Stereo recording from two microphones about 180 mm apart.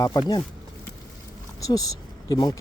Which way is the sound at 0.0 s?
20° left (ahead or behind).